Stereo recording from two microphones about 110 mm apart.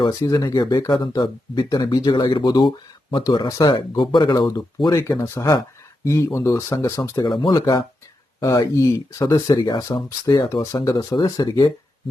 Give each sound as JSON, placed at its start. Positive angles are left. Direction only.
{"t": 0.1, "sound": "speech", "side_deg": 30}
{"t": 5.0, "sound": "speech", "side_deg": 25}
{"t": 7.2, "sound": "speech", "side_deg": 45}
{"t": 10.9, "sound": "speech", "side_deg": 45}